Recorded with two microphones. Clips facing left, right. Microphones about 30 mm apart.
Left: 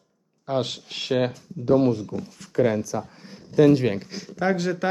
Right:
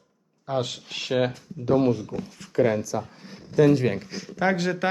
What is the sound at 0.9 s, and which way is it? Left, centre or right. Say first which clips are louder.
Speech: even; right.